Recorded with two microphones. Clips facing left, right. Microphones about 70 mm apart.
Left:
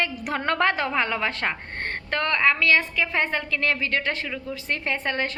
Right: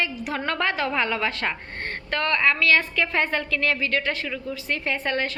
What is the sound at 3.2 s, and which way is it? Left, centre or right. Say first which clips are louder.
A woman's voice: right 1 dB; left.